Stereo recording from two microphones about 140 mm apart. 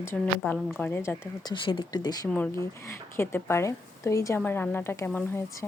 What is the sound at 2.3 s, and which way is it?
Speech, 15° left (ahead or behind).